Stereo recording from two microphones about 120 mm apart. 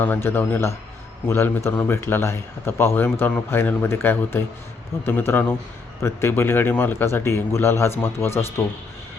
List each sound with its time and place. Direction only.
0.0 s a man's voice: 15° left (ahead or behind)